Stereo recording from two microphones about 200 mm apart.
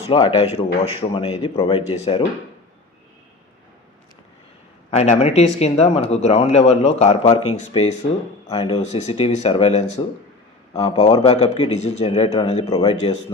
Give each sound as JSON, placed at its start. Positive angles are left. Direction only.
{"t": 0.1, "sound": "speech", "side_deg": 25}
{"t": 4.9, "sound": "speech", "side_deg": 35}